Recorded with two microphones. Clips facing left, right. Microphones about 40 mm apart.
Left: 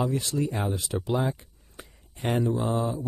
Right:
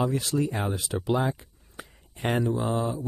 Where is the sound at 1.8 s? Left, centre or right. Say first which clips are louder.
Right 2 dB; centre.